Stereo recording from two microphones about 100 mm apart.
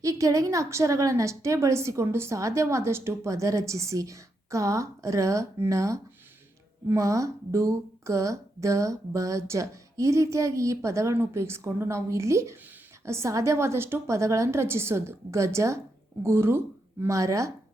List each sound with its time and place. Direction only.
0.0 s a woman's voice: 35° right (ahead or behind)